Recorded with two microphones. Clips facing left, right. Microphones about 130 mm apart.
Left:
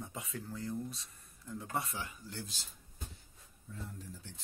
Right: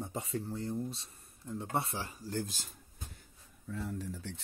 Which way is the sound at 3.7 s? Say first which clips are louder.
Right 8 dB; 75° right (ahead or behind).